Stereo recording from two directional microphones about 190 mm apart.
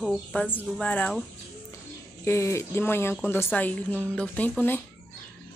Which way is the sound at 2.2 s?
15° left (ahead or behind).